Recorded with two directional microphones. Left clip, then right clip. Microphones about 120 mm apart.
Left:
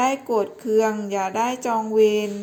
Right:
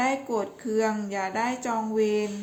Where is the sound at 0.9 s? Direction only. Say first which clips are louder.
Left 5 dB; 30° left (ahead or behind).